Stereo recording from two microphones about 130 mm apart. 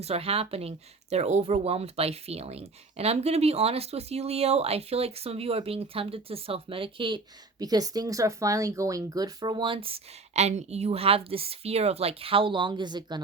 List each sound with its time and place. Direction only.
0.0 s speech: 50° right (ahead or behind)
7.6 s speech: 30° right (ahead or behind)